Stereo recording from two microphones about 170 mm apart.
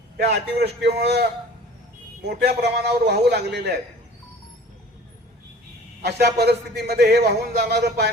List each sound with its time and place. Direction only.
0.2 s speech: 75° right (ahead or behind)
6.0 s speech: 75° right (ahead or behind)